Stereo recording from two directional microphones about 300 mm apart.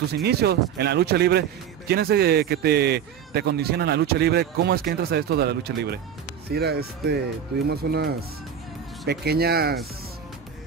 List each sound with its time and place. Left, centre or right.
0.1 s speech: right